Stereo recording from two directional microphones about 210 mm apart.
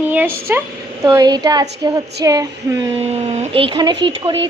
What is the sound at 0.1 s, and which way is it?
A woman's voice, 10° right (ahead or behind).